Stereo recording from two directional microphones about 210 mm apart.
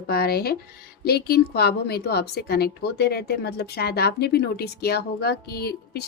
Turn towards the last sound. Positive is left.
turn(degrees=50)  # may be behind; listen again after turning